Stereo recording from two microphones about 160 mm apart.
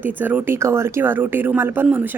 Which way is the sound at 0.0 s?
10° right (ahead or behind).